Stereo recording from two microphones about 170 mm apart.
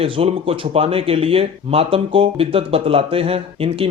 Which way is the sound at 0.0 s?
35° right (ahead or behind).